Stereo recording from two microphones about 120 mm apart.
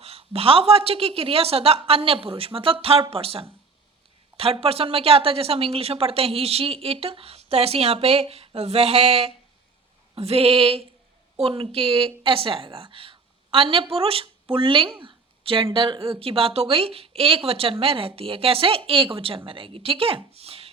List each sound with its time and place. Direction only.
0.0 s a woman's voice: 55° right (ahead or behind)